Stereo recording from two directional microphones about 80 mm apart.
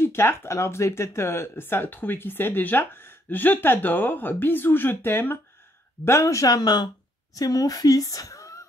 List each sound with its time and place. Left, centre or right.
0.0 s a woman's voice: left